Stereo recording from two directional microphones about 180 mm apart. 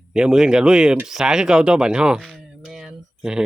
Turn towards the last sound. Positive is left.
turn(degrees=-5)  # may be behind; listen again after turning